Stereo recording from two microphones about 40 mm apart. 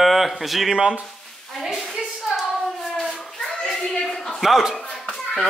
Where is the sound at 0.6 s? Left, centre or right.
Right.